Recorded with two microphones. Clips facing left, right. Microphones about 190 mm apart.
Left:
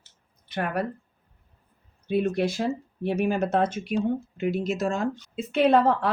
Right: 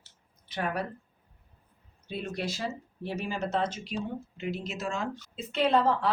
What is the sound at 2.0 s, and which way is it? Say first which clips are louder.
Speech: left 10 dB; 55° left (ahead or behind).